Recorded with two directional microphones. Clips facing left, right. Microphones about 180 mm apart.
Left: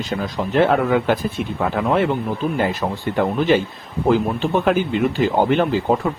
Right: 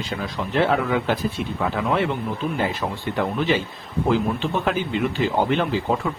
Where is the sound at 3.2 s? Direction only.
50° left (ahead or behind).